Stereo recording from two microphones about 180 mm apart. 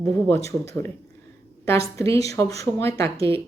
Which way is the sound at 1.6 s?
15° left (ahead or behind).